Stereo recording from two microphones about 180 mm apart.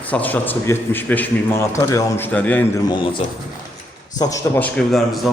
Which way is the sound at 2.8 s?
30° left (ahead or behind).